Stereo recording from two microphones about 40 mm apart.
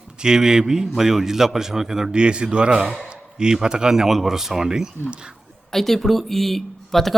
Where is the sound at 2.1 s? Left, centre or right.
Right.